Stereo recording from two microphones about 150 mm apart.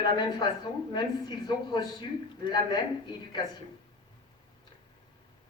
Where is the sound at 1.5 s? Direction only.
30° left (ahead or behind).